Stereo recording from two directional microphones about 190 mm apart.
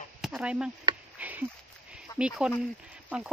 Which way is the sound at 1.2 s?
10° right (ahead or behind).